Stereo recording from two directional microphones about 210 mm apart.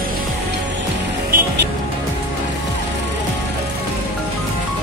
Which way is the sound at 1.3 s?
45° right (ahead or behind).